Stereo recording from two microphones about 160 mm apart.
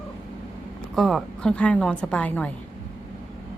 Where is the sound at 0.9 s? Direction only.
Centre (ahead or behind).